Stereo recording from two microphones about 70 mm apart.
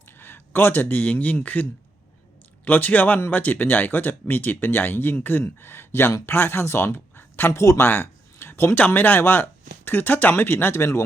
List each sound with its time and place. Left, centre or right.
0.2 s speech: left
2.6 s speech: left
7.9 s a sound: left
8.9 s speech: left